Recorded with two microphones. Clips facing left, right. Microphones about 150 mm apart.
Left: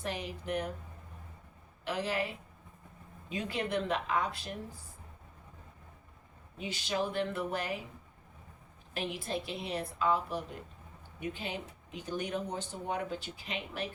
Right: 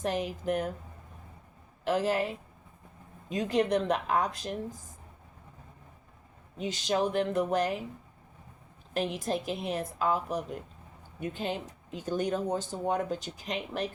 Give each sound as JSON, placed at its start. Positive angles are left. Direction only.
{"t": 0.0, "sound": "speech", "side_deg": -45}
{"t": 1.8, "sound": "speech", "side_deg": -45}
{"t": 6.6, "sound": "speech", "side_deg": -40}
{"t": 8.9, "sound": "speech", "side_deg": -40}